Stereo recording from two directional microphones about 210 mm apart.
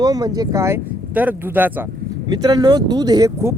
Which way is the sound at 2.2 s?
20° right (ahead or behind).